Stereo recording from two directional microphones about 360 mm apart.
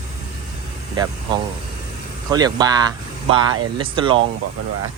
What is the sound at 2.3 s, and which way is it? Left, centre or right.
Speech, centre.